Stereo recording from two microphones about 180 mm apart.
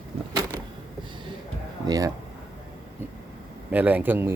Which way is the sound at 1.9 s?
20° right (ahead or behind).